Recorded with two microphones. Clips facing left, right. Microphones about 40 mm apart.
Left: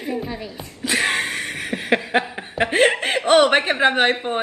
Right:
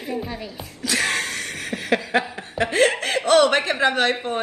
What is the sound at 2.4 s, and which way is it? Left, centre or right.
Speech, left.